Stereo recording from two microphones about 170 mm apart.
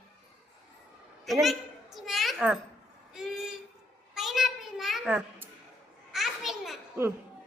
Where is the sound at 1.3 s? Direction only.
Centre (ahead or behind).